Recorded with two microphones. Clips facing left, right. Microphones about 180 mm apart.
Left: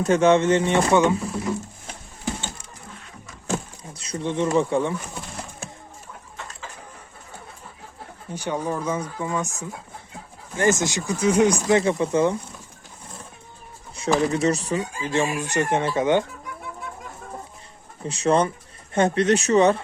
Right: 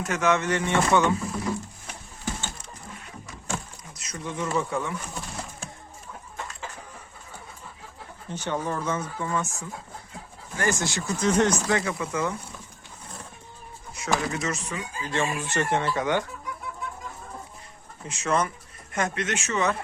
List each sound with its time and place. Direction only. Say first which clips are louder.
0.0 s speech: left 7 dB; 30° left (ahead or behind)
3.9 s speech: left 8 dB; 30° left (ahead or behind)
8.3 s speech: left 3 dB; 10° left (ahead or behind)
11.8 s speech: left 8 dB; 30° left (ahead or behind)
13.9 s speech: left 6 dB; 30° left (ahead or behind)
15.1 s speech: left 4 dB; 15° left (ahead or behind)
18.0 s speech: left 6 dB; 35° left (ahead or behind)